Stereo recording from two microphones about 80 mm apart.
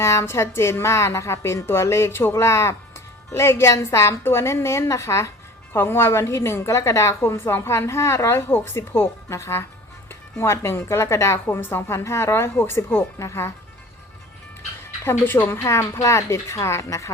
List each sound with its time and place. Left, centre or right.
0.0 s a woman's voice: left
15.0 s a woman's voice: left
15.6 s a woman's voice: left